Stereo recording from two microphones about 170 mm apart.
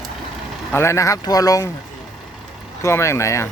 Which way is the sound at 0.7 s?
15° left (ahead or behind).